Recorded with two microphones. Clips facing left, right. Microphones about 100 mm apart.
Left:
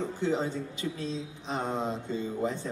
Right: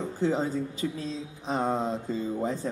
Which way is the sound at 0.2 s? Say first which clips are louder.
Right 4 dB; 35° right (ahead or behind).